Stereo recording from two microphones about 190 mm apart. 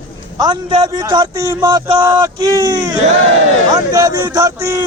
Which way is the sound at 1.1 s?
20° right (ahead or behind).